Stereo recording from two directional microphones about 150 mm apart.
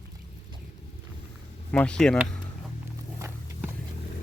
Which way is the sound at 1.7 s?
5° left (ahead or behind).